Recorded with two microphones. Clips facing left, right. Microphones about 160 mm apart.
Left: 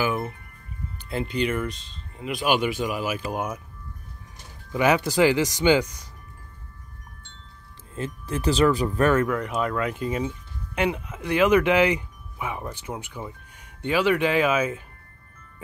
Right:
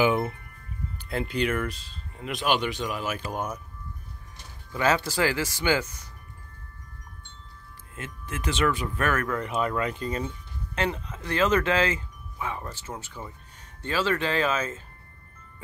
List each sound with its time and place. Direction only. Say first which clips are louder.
0.0 s speech: right 3 dB; 20° right (ahead or behind)
1.0 s speech: left 1 dB; centre (ahead or behind)
4.7 s speech: left 4 dB; 15° left (ahead or behind)
7.9 s speech: left 7 dB; 35° left (ahead or behind)
9.3 s speech: left 2 dB; centre (ahead or behind)